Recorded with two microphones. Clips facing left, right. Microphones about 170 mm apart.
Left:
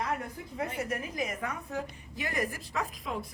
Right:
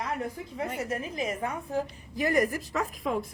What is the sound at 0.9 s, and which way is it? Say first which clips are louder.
Speech: right 3 dB; 25° right (ahead or behind).